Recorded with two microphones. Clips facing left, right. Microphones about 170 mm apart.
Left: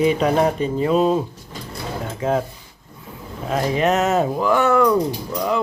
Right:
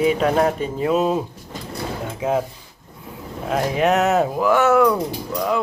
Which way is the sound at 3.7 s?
5° right (ahead or behind).